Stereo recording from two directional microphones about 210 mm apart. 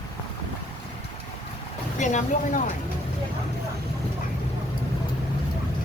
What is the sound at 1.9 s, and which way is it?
Speech, 35° left (ahead or behind).